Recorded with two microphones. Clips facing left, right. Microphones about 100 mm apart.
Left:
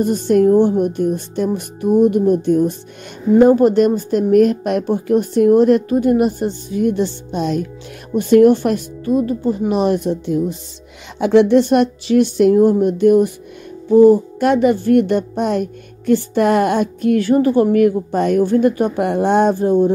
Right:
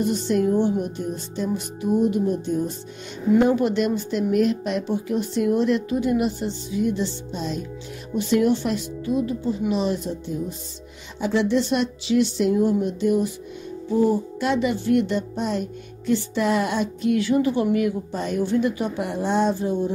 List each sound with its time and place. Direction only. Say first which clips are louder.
0.0 s speech: left 8 dB; 50° left (ahead or behind)
3.3 s speech: left 9 dB; 45° left (ahead or behind); by 7.6 s 65° left (ahead or behind)
8.1 s speech: left 10 dB; 50° left (ahead or behind)